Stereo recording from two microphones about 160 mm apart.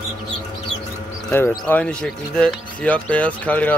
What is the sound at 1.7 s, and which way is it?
Speech, 5° left (ahead or behind).